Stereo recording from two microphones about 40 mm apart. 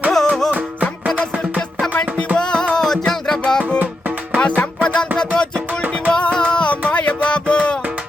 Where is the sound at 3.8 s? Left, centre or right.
Right.